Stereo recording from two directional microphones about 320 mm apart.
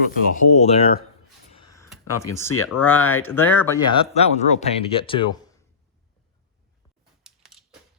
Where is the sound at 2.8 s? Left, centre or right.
Centre.